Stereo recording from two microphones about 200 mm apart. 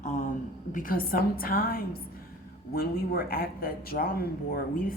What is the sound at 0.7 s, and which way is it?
Speech, 45° left (ahead or behind).